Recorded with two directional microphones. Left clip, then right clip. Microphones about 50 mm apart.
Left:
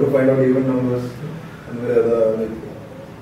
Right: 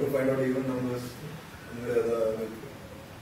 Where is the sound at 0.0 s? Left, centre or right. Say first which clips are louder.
Left 11 dB; right.